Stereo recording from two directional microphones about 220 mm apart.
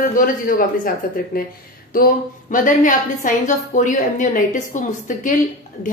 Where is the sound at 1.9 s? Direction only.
40° left (ahead or behind).